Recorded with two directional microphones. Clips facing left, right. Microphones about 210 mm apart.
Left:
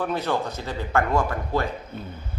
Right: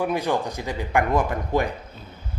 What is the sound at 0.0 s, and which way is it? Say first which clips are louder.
A man's voice: right 2 dB; 15° right (ahead or behind).